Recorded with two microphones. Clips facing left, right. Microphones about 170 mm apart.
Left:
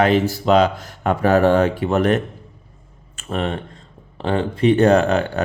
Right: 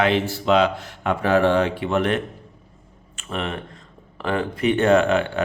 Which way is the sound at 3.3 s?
35° left (ahead or behind).